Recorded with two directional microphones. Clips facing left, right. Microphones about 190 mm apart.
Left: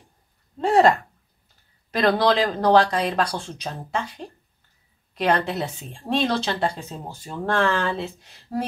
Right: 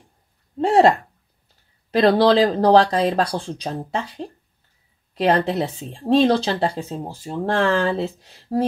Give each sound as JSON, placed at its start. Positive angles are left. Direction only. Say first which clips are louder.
{"t": 0.6, "sound": "speech", "louder": "right 2 dB", "side_deg": -30}